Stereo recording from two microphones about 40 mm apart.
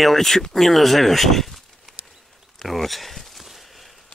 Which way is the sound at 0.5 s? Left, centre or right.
Centre.